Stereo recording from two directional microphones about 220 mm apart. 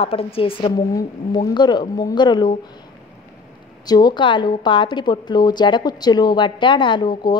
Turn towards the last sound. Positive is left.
turn(degrees=20)  # may be behind; listen again after turning